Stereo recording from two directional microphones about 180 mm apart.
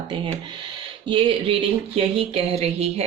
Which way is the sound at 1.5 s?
30° right (ahead or behind).